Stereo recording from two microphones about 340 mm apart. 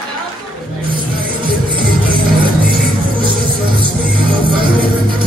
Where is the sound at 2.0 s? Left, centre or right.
Right.